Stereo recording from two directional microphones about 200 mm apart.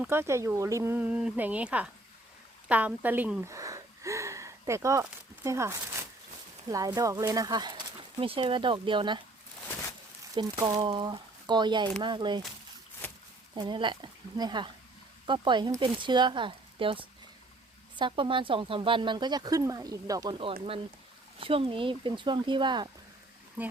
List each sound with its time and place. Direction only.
0.0 s speech: 10° right (ahead or behind)
10.3 s speech: 20° right (ahead or behind)
13.5 s speech: 25° right (ahead or behind)